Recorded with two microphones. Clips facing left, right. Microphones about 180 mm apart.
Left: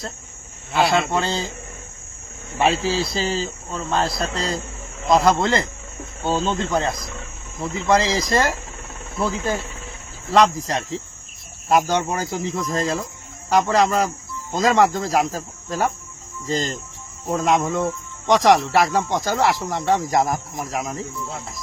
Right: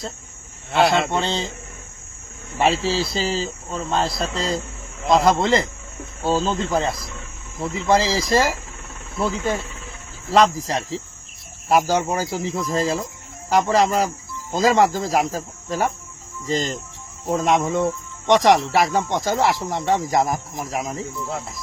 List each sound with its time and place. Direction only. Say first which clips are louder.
0.7 s speech: right 1 dB; centre (ahead or behind)
2.6 s speech: even; centre (ahead or behind)